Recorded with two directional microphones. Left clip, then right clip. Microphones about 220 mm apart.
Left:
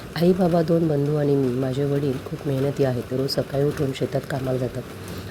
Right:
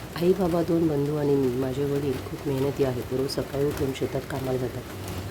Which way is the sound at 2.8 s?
15° left (ahead or behind).